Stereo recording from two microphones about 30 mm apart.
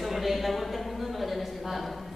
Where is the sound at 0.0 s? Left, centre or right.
Centre.